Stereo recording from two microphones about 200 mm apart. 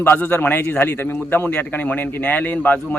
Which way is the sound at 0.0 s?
10° left (ahead or behind).